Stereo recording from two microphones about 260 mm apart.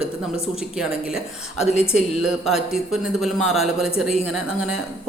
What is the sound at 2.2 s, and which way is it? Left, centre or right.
A man's voice, centre.